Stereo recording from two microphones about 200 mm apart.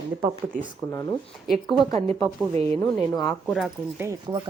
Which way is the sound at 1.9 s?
30° right (ahead or behind).